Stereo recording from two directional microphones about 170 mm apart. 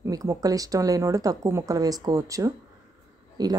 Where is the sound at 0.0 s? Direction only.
20° right (ahead or behind).